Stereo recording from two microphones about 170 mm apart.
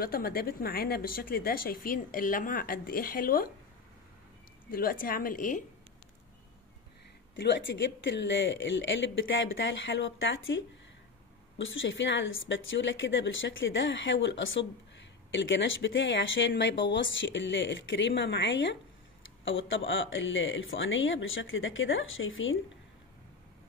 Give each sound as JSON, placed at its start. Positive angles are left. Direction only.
{"t": 0.0, "sound": "speech", "side_deg": 60}
{"t": 4.6, "sound": "speech", "side_deg": 55}
{"t": 7.3, "sound": "a woman's voice", "side_deg": 90}